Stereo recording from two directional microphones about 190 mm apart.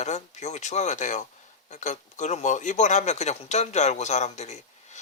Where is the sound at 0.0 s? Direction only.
35° left (ahead or behind).